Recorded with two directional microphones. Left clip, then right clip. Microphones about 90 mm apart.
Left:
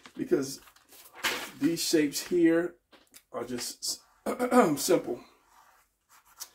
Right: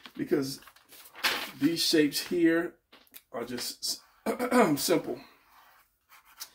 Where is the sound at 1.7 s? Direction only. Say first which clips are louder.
Right 2 dB; centre (ahead or behind).